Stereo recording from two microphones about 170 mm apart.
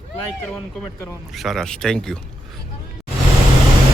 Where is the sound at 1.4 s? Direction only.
Centre (ahead or behind).